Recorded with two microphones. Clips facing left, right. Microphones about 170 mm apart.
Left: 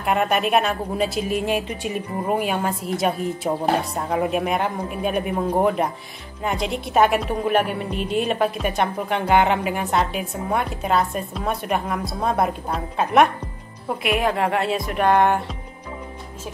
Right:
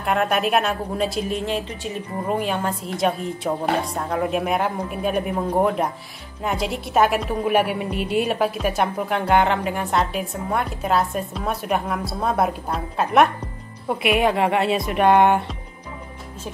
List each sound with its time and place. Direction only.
0.0 s a woman's voice: centre (ahead or behind)